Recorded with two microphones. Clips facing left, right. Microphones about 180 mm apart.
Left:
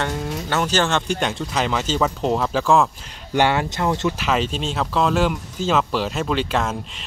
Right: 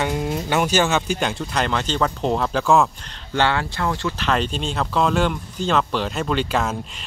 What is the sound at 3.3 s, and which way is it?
Speech, 15° left (ahead or behind).